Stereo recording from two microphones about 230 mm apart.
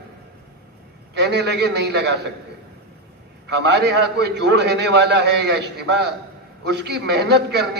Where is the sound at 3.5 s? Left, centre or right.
Right.